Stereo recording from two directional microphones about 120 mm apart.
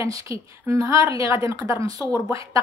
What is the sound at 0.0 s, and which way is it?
A woman's voice, 25° right (ahead or behind).